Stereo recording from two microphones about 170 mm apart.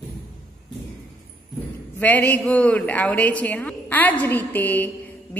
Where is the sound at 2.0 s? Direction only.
10° left (ahead or behind).